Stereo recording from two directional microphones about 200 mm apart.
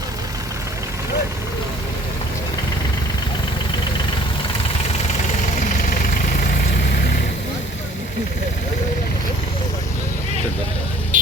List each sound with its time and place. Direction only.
11.1 s vehicle: 40° right (ahead or behind)